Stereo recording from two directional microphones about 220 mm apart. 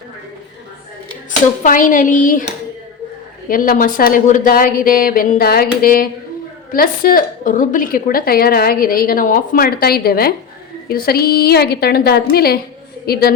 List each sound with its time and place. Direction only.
1.6 s a woman's voice: 35° left (ahead or behind)
3.5 s a woman's voice: 40° left (ahead or behind)